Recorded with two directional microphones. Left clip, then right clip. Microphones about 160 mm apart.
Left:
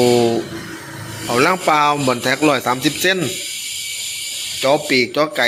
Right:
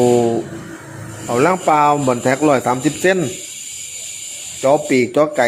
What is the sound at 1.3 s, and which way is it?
Speech, 15° right (ahead or behind).